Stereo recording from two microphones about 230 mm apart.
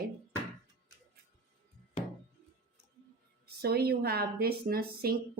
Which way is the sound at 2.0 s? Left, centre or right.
Left.